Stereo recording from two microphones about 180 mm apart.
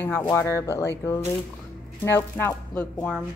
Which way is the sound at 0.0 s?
10° left (ahead or behind).